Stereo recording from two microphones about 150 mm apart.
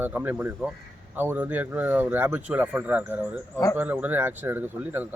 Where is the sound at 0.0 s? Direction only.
10° right (ahead or behind).